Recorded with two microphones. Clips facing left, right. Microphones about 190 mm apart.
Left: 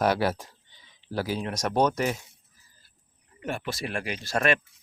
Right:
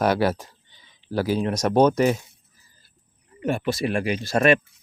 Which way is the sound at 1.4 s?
35° right (ahead or behind).